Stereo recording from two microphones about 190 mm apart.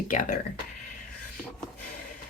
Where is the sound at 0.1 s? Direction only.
45° left (ahead or behind).